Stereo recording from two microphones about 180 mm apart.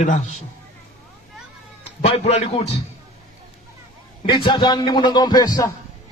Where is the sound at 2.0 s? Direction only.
35° left (ahead or behind).